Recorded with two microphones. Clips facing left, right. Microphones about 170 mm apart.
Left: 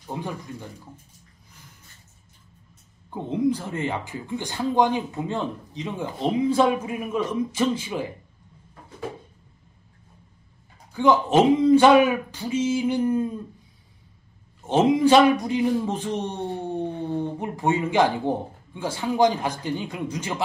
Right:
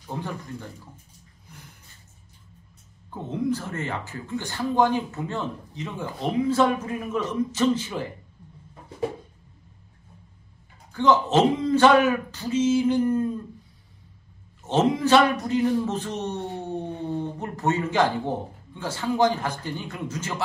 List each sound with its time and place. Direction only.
0.0 s speech: 15° left (ahead or behind)
3.2 s speech: 15° left (ahead or behind)
10.9 s speech: 10° left (ahead or behind)
14.6 s speech: 10° left (ahead or behind)
17.4 s speech: 10° left (ahead or behind)